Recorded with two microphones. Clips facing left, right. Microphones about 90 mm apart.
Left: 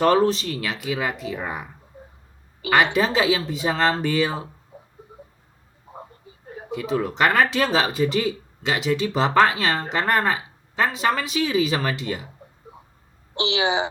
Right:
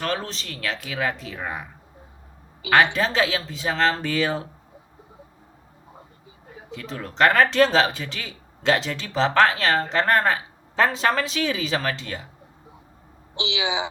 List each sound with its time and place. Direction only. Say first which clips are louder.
0.2 s speech: left 12 dB; 5° left (ahead or behind)
6.7 s speech: left 10 dB; 5° left (ahead or behind)
13.3 s a woman's voice: left 4 dB; 45° left (ahead or behind)